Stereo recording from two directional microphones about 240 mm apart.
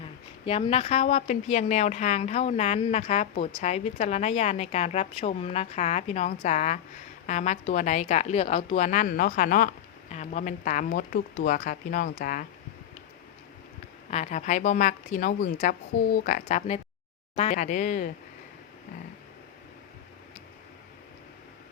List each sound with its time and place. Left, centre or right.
0.4 s a woman's voice: left
14.1 s a woman's voice: left